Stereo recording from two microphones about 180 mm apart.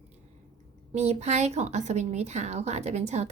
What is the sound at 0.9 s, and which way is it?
Speech, 35° right (ahead or behind).